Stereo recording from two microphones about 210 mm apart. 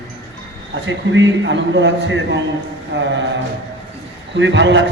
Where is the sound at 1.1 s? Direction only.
60° right (ahead or behind).